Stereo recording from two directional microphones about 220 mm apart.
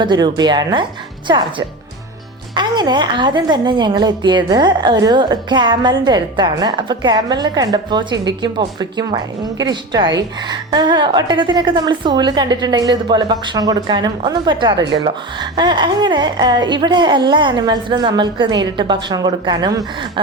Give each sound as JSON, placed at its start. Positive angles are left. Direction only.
{"t": 0.0, "sound": "a woman's voice", "side_deg": -20}